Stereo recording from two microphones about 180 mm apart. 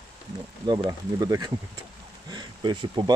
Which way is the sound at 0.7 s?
20° right (ahead or behind).